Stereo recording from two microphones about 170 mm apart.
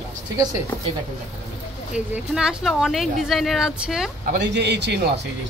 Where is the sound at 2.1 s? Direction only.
5° right (ahead or behind).